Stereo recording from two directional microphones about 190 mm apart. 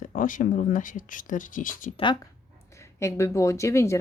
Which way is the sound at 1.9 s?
25° left (ahead or behind).